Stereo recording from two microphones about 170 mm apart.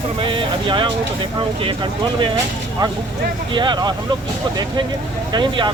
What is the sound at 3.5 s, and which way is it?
Speech, 25° right (ahead or behind).